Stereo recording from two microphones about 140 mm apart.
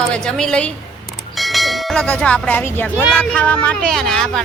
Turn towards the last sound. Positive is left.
turn(degrees=5)  # may be behind; listen again after turning